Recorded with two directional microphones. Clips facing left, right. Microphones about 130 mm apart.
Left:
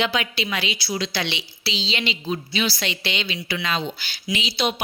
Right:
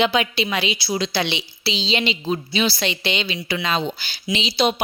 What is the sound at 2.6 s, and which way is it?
A woman's voice, 25° right (ahead or behind).